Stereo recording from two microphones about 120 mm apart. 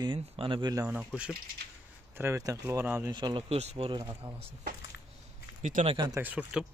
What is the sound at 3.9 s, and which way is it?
Speech, 35° right (ahead or behind).